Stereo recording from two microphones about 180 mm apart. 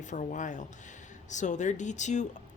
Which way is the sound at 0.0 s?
45° left (ahead or behind).